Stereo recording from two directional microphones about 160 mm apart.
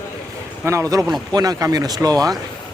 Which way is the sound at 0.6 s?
20° right (ahead or behind).